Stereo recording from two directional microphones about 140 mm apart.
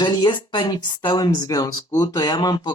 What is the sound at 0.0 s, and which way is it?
Speech, 30° left (ahead or behind).